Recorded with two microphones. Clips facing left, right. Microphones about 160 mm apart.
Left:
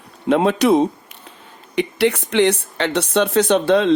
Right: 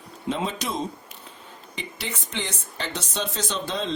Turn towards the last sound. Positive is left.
turn(degrees=65)  # may be behind; listen again after turning